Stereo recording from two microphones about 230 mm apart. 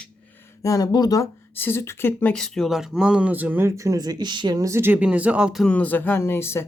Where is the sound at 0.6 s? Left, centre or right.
Centre.